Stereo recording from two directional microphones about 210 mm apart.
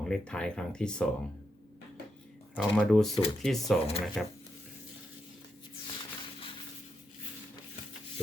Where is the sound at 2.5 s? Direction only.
5° left (ahead or behind).